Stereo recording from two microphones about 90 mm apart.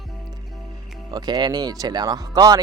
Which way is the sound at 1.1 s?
50° right (ahead or behind).